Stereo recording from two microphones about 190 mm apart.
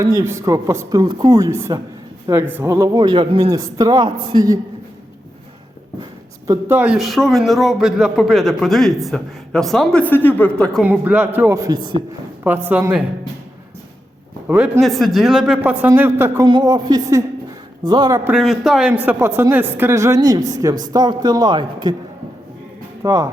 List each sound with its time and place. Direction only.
0.0 s a man's voice: 15° right (ahead or behind)
6.5 s a man's voice: 10° right (ahead or behind); by 10.8 s 5° left (ahead or behind)
10.8 s a man's voice: 10° right (ahead or behind); by 12.0 s 25° right (ahead or behind)
12.6 s a man's voice: 10° right (ahead or behind)
14.4 s a man's voice: 5° right (ahead or behind)
18.3 s a man's voice: centre (ahead or behind); by 21.9 s 25° right (ahead or behind)
23.0 s a man's voice: 20° right (ahead or behind)